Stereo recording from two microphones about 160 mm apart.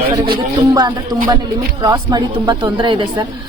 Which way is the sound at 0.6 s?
20° right (ahead or behind).